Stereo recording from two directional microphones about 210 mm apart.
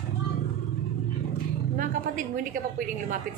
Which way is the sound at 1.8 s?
40° right (ahead or behind).